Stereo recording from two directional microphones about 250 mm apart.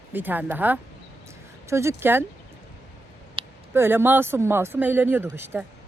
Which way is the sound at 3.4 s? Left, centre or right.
Right.